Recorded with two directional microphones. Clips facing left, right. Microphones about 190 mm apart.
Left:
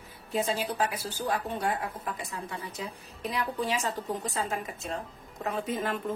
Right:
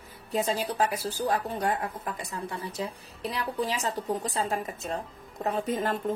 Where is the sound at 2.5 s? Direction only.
35° right (ahead or behind).